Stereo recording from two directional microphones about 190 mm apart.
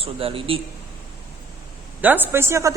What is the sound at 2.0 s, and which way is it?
Speech, 10° right (ahead or behind).